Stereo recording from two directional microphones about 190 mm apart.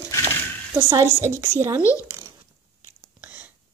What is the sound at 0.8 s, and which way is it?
Speech, 20° right (ahead or behind).